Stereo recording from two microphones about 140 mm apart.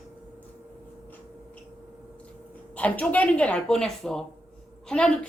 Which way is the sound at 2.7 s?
10° left (ahead or behind).